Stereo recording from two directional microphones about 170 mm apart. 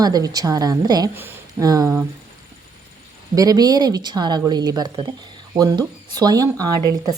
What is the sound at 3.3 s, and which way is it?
A woman's voice, 20° right (ahead or behind).